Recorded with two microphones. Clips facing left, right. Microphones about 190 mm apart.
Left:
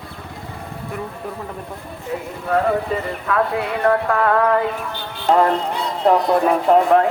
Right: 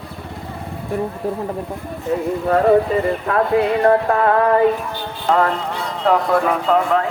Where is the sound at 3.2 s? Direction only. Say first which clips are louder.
Right 1 dB; 35° right (ahead or behind).